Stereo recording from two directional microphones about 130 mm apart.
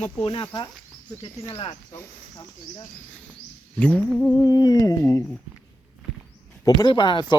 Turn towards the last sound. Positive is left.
turn(degrees=35)  # may be behind; listen again after turning